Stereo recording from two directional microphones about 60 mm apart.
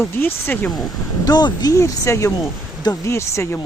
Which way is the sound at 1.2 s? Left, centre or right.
Left.